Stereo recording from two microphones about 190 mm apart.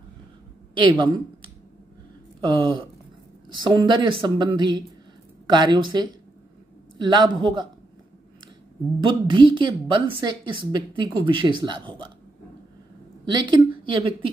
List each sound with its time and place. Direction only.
0.7 s a woman's voice: 25° right (ahead or behind)
9.0 s a woman's voice: 25° right (ahead or behind)
13.2 s a woman's voice: 25° right (ahead or behind)